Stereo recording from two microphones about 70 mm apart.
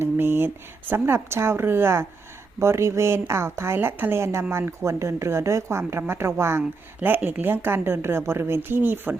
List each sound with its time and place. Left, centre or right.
0.0 s speech: right
6.6 s speech: right